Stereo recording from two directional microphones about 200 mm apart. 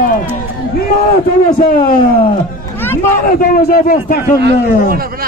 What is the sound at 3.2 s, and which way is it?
A man's voice, 45° left (ahead or behind).